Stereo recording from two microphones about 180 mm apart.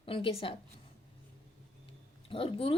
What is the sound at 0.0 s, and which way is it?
Speech, 30° left (ahead or behind).